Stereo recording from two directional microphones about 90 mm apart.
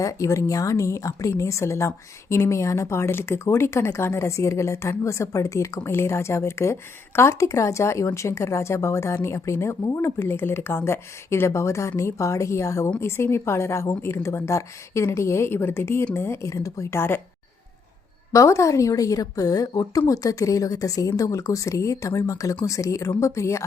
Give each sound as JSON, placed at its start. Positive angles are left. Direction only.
{"t": 0.0, "sound": "a woman's voice", "side_deg": 35}
{"t": 18.3, "sound": "a woman's voice", "side_deg": 35}